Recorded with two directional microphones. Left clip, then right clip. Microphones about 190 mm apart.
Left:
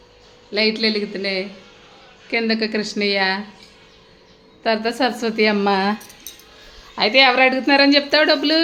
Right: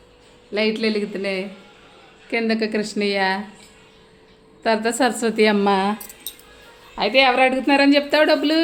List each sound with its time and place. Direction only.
0.5 s speech: 5° right (ahead or behind)
4.6 s a woman's voice: 10° right (ahead or behind)
6.3 s music: 40° right (ahead or behind)
6.9 s speech: 5° left (ahead or behind)